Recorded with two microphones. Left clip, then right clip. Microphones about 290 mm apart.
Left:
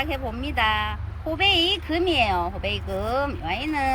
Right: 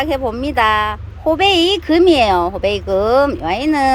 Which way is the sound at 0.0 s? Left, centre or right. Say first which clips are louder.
Right 10 dB; centre.